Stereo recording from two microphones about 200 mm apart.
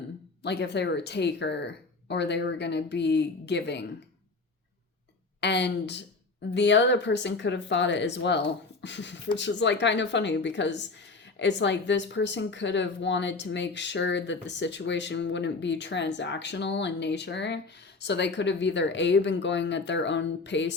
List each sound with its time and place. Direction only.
0.4 s speech: 60° left (ahead or behind)
5.4 s speech: 60° left (ahead or behind)